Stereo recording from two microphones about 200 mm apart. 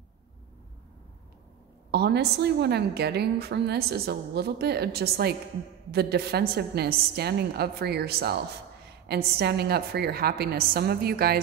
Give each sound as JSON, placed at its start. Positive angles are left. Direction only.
{"t": 1.9, "sound": "a woman's voice", "side_deg": -55}